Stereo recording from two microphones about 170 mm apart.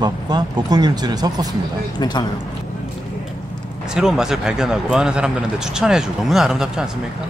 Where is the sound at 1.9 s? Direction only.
25° left (ahead or behind).